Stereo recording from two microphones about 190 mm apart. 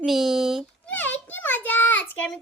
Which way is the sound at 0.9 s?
10° left (ahead or behind).